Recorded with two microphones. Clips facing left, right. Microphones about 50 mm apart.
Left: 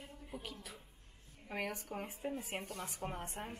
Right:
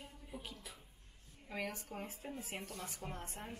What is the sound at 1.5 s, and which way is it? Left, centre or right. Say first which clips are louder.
Speech: left 2 dB; left.